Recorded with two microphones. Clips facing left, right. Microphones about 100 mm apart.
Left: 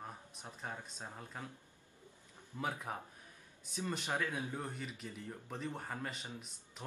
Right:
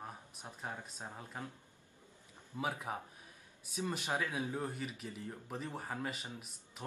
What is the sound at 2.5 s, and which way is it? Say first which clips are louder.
Speech: right 1 dB; 10° right (ahead or behind).